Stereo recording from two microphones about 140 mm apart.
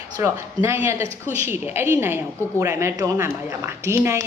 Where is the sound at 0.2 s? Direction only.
20° right (ahead or behind).